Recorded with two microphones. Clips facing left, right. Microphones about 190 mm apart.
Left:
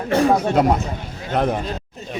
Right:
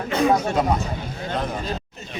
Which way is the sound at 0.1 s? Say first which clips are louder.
Left 3 dB; 55° left (ahead or behind).